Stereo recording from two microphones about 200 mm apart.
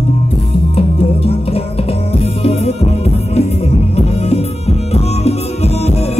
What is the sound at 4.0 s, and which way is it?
Music, 30° left (ahead or behind).